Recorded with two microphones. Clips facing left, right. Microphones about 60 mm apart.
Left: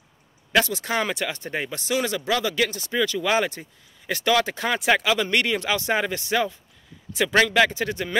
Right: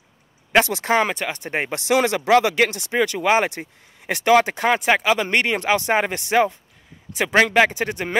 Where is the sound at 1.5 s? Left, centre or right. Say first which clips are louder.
Right 4 dB; right.